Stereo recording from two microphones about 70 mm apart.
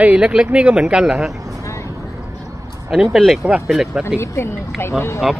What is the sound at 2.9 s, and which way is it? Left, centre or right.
Speech, centre.